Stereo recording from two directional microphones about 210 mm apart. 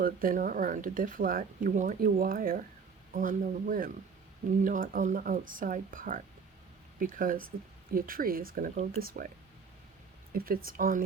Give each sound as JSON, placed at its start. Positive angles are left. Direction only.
{"t": 0.0, "sound": "speech", "side_deg": -40}
{"t": 10.3, "sound": "speech", "side_deg": -45}